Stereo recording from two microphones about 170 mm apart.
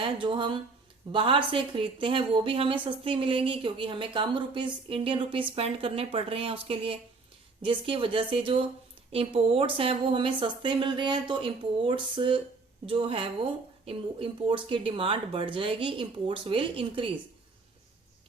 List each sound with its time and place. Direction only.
0.0 s a woman's voice: 30° right (ahead or behind)